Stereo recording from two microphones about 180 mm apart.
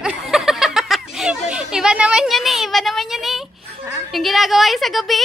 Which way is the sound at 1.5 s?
5° right (ahead or behind).